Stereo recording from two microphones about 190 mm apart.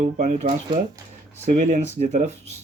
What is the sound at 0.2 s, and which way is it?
Speech, 40° right (ahead or behind).